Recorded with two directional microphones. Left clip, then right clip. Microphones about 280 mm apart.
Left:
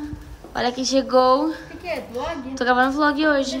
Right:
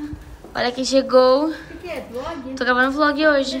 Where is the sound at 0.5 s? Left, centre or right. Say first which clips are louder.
Right 2 dB; centre.